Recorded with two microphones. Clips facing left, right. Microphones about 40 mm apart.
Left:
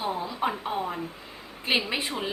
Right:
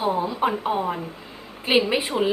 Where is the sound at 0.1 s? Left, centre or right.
Right.